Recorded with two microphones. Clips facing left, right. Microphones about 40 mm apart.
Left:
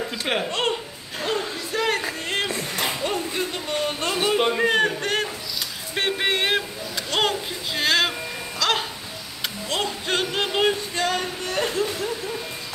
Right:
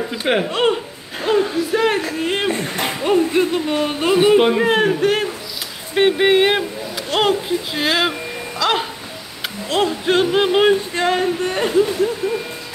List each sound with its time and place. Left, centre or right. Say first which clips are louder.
0.1 s speech: right 9 dB; centre
1.2 s music: right 9 dB; centre
2.1 s speech: right 7 dB; centre
2.5 s speech: right 4 dB; right; by 8.1 s centre
8.5 s music: right 5 dB; centre
9.7 s speech: right 8 dB; centre